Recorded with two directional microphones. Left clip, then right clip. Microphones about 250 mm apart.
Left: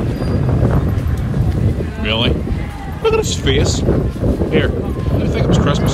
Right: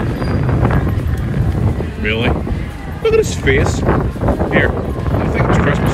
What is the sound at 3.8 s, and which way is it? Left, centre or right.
Speech, centre.